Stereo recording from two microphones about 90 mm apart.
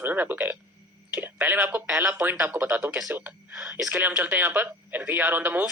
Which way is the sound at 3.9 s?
20° right (ahead or behind).